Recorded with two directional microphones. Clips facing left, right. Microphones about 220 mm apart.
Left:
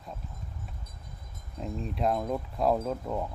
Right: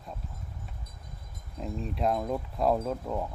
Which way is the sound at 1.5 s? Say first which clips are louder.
Even; centre (ahead or behind).